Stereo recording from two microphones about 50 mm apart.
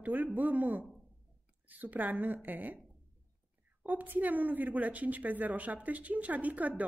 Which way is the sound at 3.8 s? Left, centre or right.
Right.